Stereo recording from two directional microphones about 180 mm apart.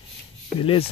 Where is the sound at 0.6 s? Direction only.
30° left (ahead or behind).